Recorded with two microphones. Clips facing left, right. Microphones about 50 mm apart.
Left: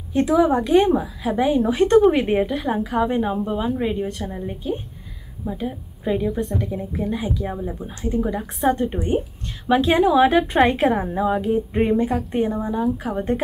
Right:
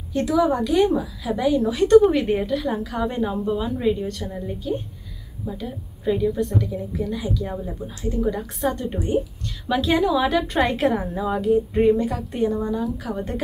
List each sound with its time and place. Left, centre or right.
0.1 s a woman's voice: left
7.5 s a woman's voice: centre
8.6 s a woman's voice: left